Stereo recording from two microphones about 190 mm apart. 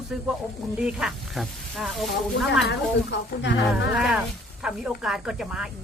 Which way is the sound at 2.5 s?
65° left (ahead or behind).